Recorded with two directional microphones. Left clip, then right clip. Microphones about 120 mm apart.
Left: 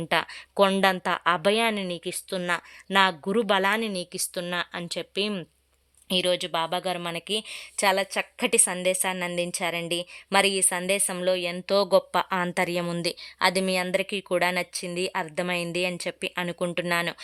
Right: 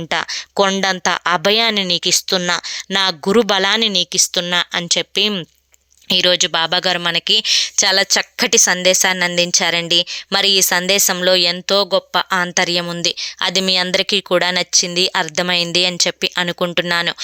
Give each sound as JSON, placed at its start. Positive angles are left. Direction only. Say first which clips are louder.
{"t": 0.1, "sound": "speech", "louder": "right 6 dB", "side_deg": -25}
{"t": 11.7, "sound": "speech", "louder": "right 2 dB", "side_deg": -5}